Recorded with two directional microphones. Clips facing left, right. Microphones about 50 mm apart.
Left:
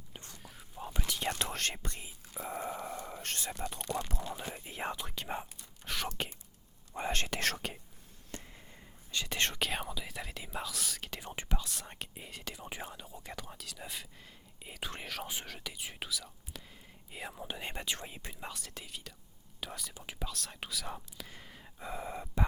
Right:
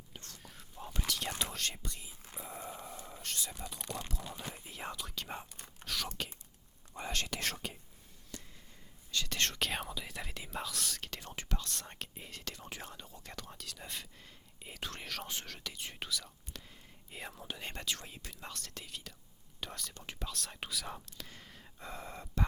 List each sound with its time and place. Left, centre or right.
0.1 s whispering: centre
1.3 s whispering: left
2.4 s a sound: left
3.1 s whispering: left
3.8 s whispering: centre
4.5 s whispering: left
7.3 s whispering: left
8.3 s a sound: left
9.1 s whispering: centre
9.6 s whispering: centre
11.5 s whispering: centre
17.4 s whispering: centre
18.4 s whispering: centre